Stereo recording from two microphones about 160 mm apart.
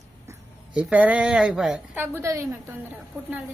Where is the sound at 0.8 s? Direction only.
10° right (ahead or behind).